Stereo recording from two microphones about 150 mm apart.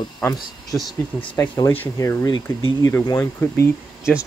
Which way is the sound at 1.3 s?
20° left (ahead or behind).